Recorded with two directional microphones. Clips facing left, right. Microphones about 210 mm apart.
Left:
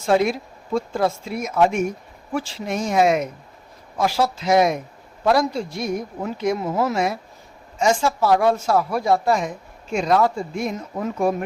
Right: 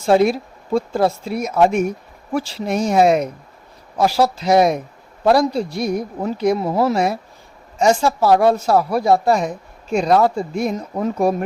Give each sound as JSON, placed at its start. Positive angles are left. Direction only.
{"t": 0.0, "sound": "a woman's voice", "side_deg": -35}